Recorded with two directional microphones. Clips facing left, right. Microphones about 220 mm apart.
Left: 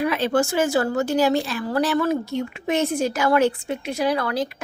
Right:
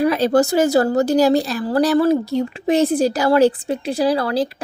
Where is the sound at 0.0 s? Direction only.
40° right (ahead or behind).